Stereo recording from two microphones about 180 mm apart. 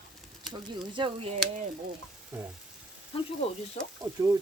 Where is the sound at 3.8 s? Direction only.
40° left (ahead or behind).